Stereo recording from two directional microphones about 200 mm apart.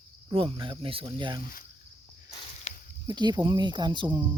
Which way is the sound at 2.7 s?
35° left (ahead or behind).